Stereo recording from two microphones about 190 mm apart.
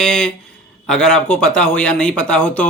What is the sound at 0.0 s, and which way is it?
A man's voice, 5° left (ahead or behind).